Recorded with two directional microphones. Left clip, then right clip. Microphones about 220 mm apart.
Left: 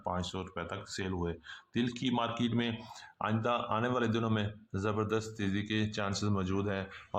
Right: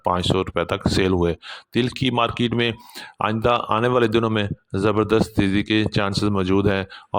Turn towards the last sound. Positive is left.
turn(degrees=-40)  # may be behind; listen again after turning